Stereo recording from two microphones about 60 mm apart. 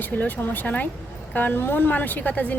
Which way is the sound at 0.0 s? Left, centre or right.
Left.